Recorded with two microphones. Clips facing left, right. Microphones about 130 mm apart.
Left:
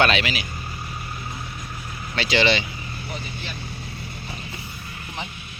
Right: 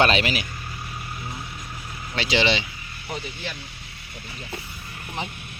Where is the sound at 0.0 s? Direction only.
40° right (ahead or behind).